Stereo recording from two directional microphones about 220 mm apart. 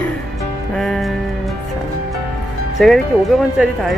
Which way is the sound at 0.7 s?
Centre (ahead or behind).